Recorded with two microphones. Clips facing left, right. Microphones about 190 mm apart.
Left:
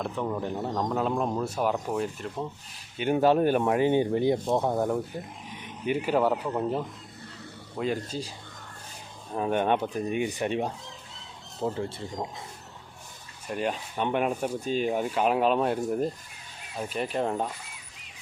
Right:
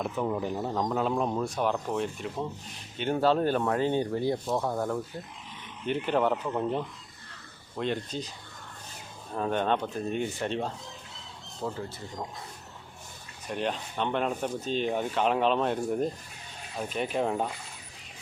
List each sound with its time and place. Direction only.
0.0 s speech: 5° right (ahead or behind)
3.0 s speech: 15° left (ahead or behind)
9.3 s speech: 10° left (ahead or behind)
11.6 s speech: 30° left (ahead or behind)
13.5 s speech: 5° left (ahead or behind)